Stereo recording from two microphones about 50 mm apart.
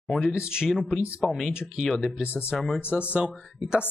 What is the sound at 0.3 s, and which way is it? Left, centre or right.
Speech, centre.